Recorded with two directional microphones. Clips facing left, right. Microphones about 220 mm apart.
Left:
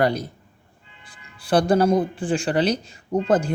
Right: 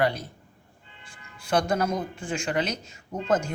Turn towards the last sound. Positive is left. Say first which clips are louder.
# left 6 dB
turn(degrees=35)  # may be behind; listen again after turning